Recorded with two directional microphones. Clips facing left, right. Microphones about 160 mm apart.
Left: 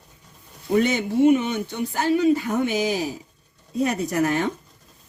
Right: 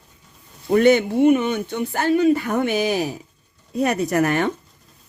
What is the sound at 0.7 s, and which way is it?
Speech, 60° right (ahead or behind).